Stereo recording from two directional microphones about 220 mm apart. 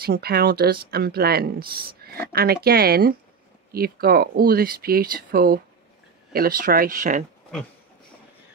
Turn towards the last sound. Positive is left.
turn(degrees=-35)  # may be behind; listen again after turning